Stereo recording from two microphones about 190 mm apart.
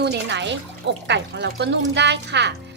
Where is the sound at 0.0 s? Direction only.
65° right (ahead or behind).